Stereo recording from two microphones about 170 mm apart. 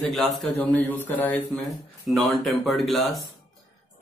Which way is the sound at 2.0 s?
Centre (ahead or behind).